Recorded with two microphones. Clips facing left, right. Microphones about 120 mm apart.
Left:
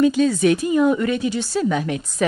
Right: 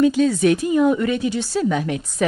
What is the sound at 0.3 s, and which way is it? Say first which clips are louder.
A woman's voice: even; centre (ahead or behind).